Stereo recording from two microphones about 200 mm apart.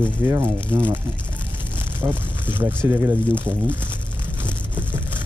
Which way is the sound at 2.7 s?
10° right (ahead or behind).